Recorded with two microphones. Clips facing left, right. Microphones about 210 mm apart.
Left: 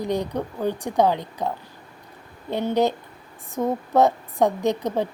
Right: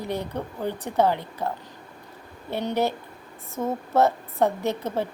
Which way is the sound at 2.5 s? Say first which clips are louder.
Left 4 dB; 15° left (ahead or behind).